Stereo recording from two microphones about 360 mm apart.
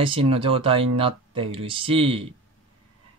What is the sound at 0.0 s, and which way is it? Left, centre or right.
Speech, centre.